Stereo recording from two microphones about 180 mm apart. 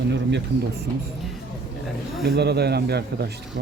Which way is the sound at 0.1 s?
75° right (ahead or behind).